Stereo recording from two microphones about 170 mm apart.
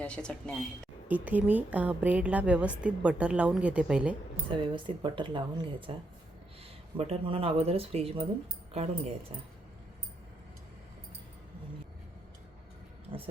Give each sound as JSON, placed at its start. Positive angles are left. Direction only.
{"t": 0.0, "sound": "speech", "side_deg": 5}
{"t": 1.0, "sound": "a woman's voice", "side_deg": -10}
{"t": 4.4, "sound": "speech", "side_deg": -30}